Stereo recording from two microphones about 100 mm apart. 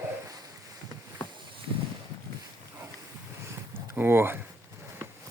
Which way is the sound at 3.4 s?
20° right (ahead or behind).